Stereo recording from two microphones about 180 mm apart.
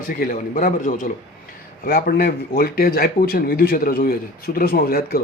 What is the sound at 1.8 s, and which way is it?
A man's voice, 55° left (ahead or behind).